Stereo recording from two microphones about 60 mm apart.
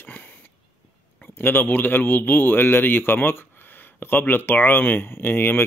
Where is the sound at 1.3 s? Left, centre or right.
Left.